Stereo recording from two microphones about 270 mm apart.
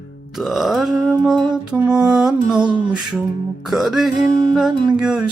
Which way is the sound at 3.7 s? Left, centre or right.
Centre.